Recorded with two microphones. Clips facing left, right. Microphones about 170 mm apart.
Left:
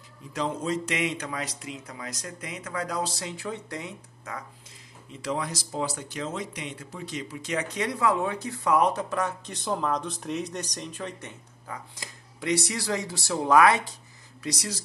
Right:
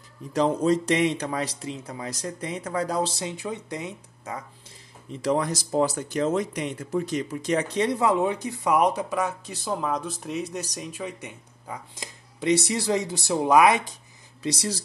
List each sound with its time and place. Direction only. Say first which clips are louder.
0.3 s a man's voice: right 7 dB; 35° right (ahead or behind); by 4.4 s 20° right (ahead or behind)
5.2 s speech: right 6 dB; 40° right (ahead or behind); by 13.9 s 15° right (ahead or behind)
14.4 s speech: right 5 dB; 25° right (ahead or behind)